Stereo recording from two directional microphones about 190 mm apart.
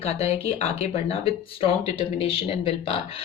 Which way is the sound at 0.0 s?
35° left (ahead or behind).